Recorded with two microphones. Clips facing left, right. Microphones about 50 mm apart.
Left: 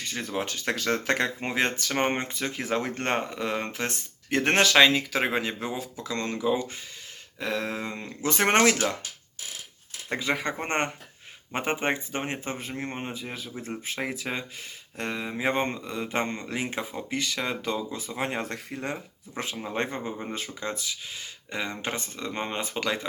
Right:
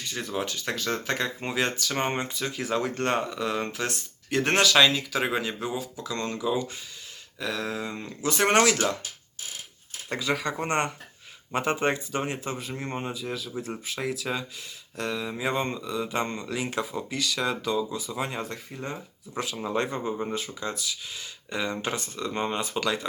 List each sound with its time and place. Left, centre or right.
0.0 s speech: left
1.4 s speech: left
6.1 s speech: centre
6.4 s speech: left
10.1 s speech: left
17.7 s speech: left
19.4 s speech: left